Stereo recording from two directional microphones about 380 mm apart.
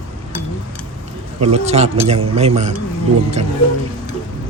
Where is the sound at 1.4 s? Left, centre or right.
Centre.